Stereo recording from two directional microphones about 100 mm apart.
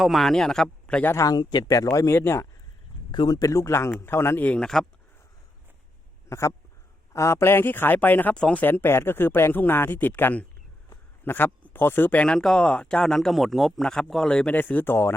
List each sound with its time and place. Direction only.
0.0 s a man's voice: centre (ahead or behind)
1.1 s speech: 35° left (ahead or behind)
1.4 s speech: 45° left (ahead or behind); by 2.5 s 25° left (ahead or behind)
3.1 s a man's voice: 45° left (ahead or behind); by 4.9 s 5° left (ahead or behind)
6.2 s a man's voice: 30° left (ahead or behind)